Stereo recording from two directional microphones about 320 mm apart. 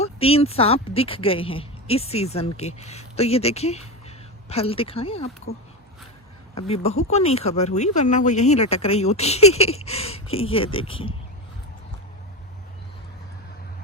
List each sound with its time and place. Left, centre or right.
0.0 s speech: centre
6.7 s speech: centre